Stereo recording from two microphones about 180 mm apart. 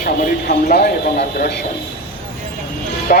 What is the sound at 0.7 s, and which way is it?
Speech, 60° left (ahead or behind).